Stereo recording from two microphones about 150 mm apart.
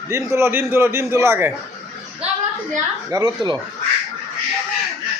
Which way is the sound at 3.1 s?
25° right (ahead or behind).